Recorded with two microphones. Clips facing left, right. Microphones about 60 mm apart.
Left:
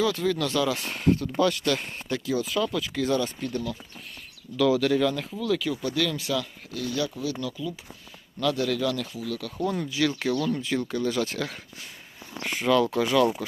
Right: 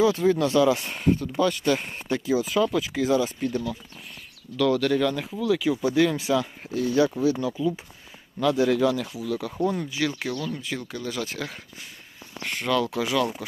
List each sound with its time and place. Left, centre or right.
0.0 s speech: right
4.5 s speech: centre
10.2 s speech: centre